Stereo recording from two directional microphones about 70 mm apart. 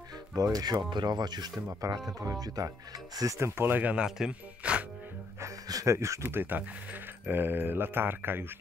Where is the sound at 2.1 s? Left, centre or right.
Right.